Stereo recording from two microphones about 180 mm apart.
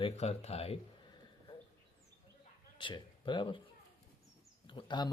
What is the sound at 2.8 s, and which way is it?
Speech, 25° left (ahead or behind).